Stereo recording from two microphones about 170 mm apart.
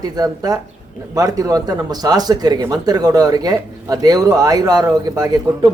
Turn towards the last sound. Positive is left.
turn(degrees=-20)  # may be behind; listen again after turning